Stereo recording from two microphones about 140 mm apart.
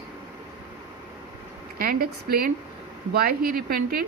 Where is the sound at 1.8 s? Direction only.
90° right.